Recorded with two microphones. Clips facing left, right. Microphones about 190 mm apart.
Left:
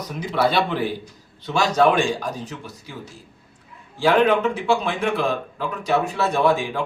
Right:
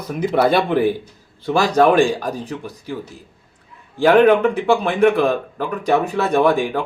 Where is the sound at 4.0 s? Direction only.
55° right (ahead or behind).